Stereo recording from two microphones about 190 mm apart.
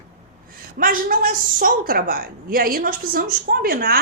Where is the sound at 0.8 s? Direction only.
50° right (ahead or behind).